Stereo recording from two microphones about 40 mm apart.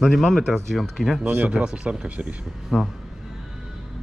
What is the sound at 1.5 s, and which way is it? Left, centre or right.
Speech, right.